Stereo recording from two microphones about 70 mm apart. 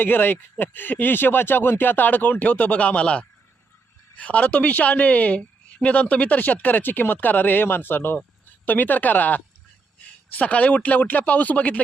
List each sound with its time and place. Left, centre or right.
0.0 s speech: left